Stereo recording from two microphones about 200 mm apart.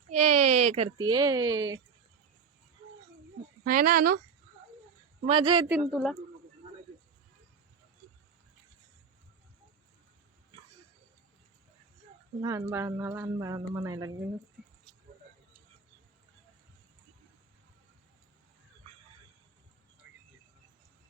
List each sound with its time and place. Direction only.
0.2 s a sound: 35° right (ahead or behind)
0.9 s speech: 20° right (ahead or behind)
3.6 s speech: 45° right (ahead or behind)
5.2 s speech: 25° right (ahead or behind)
5.6 s speech: 5° right (ahead or behind)
12.4 s speech: 20° right (ahead or behind)